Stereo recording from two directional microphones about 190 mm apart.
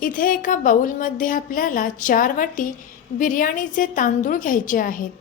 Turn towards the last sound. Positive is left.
turn(degrees=45)  # may be behind; listen again after turning